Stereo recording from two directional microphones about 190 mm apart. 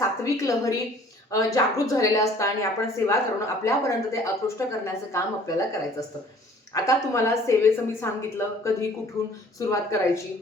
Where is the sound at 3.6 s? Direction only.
15° left (ahead or behind).